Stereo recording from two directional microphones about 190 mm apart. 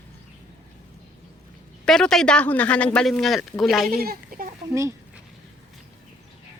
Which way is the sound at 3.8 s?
50° right (ahead or behind).